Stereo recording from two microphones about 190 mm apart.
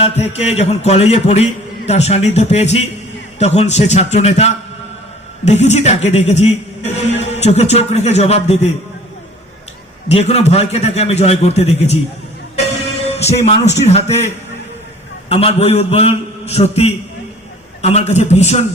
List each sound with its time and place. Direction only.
0.0 s speech: 35° left (ahead or behind)
10.1 s speech: 35° left (ahead or behind)
13.1 s speech: 35° left (ahead or behind)